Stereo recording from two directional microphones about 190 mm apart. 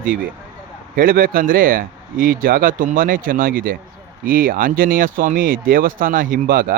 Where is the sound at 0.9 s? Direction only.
50° right (ahead or behind).